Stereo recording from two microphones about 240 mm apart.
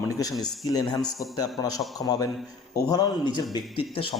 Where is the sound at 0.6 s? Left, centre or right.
Centre.